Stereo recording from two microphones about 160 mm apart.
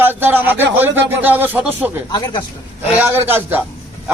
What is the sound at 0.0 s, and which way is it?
A man's voice, 15° right (ahead or behind).